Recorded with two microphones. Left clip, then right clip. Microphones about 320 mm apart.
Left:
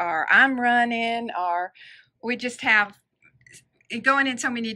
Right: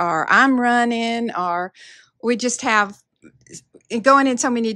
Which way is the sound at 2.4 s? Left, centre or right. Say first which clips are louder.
Right 1 dB; centre.